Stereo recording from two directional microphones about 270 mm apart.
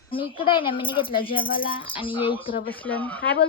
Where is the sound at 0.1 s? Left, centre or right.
Centre.